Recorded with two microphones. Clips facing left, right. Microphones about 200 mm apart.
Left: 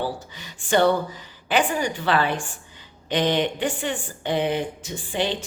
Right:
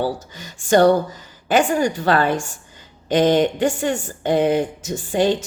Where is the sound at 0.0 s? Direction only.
45° right (ahead or behind).